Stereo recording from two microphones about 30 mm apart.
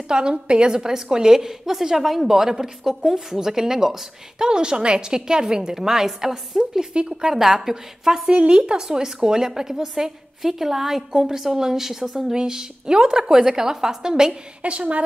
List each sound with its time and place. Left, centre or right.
0.1 s a woman's voice: right
4.5 s a woman's voice: right
5.8 s a woman's voice: centre
6.9 s a woman's voice: right
7.2 s a woman's voice: centre
8.3 s a woman's voice: right; by 11.1 s centre
11.1 s a woman's voice: centre
12.4 s a woman's voice: right
14.6 s a woman's voice: right